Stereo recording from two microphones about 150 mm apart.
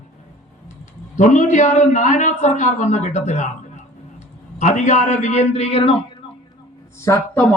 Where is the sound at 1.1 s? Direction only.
55° left (ahead or behind).